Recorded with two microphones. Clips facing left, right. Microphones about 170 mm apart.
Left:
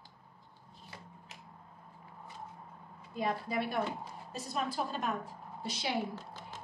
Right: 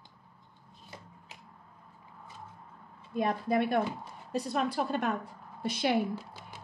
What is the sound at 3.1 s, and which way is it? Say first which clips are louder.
Speech: right 6 dB; 55° right (ahead or behind).